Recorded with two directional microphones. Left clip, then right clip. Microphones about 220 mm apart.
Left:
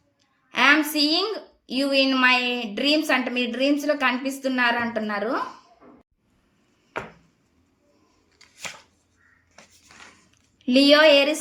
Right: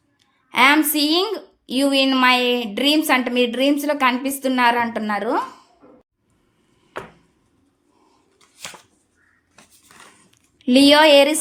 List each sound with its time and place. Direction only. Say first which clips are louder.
0.5 s a woman's voice: right 3 dB; 50° right (ahead or behind)
10.3 s speech: right 4 dB; 50° right (ahead or behind)